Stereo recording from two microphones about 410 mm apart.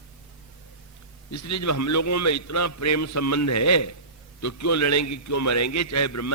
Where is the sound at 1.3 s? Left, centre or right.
Left.